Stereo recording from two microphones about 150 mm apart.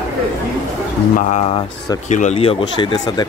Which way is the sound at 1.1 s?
50° left (ahead or behind).